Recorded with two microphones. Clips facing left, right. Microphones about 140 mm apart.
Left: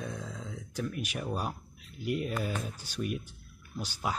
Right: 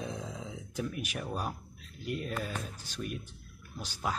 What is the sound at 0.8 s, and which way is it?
Speech, 5° right (ahead or behind).